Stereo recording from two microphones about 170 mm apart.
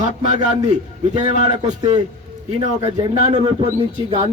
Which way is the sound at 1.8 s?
25° right (ahead or behind).